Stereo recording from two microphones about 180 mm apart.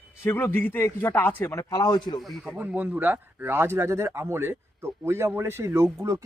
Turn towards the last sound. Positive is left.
turn(degrees=-20)  # may be behind; listen again after turning